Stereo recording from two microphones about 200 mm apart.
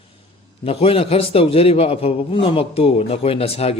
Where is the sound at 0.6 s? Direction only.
30° left (ahead or behind).